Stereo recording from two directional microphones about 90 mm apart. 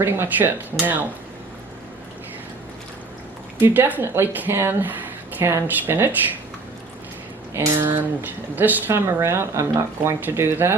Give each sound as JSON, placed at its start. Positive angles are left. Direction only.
{"t": 0.0, "sound": "speech", "side_deg": -25}
{"t": 3.6, "sound": "speech", "side_deg": -20}
{"t": 7.5, "sound": "speech", "side_deg": -35}
{"t": 7.8, "sound": "speech", "side_deg": -25}